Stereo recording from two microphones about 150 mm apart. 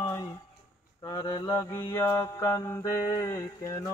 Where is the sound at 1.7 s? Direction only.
15° left (ahead or behind).